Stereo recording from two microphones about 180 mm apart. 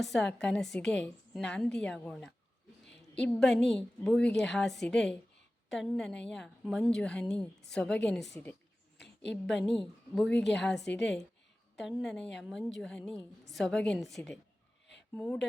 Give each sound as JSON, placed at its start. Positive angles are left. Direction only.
{"t": 0.0, "sound": "a woman's voice", "side_deg": 5}
{"t": 2.8, "sound": "a sound", "side_deg": 75}
{"t": 3.2, "sound": "a woman's voice", "side_deg": 5}
{"t": 10.4, "sound": "a woman's voice", "side_deg": 75}
{"t": 11.0, "sound": "a woman's voice", "side_deg": 5}